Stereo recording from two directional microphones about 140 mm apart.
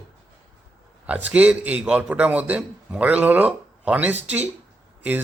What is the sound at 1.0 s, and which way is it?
A man's voice, 10° right (ahead or behind).